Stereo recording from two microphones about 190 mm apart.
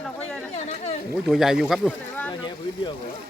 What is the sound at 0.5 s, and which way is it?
Chatter, 35° left (ahead or behind).